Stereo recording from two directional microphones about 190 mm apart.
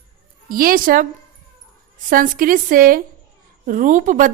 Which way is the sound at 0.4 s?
50° right (ahead or behind).